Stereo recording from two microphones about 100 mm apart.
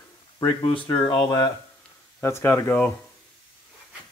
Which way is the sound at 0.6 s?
60° left (ahead or behind).